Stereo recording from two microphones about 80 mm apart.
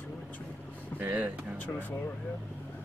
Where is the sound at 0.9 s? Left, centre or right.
Centre.